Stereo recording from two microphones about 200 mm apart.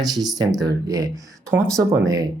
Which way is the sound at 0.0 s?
20° right (ahead or behind).